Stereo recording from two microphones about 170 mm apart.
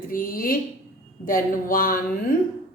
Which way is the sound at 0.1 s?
55° left (ahead or behind).